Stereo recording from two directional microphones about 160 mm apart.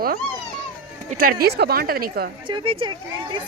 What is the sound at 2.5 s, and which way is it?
Speech, 30° right (ahead or behind).